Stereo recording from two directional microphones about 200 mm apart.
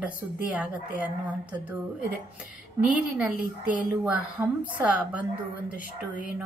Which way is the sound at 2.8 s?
5° right (ahead or behind).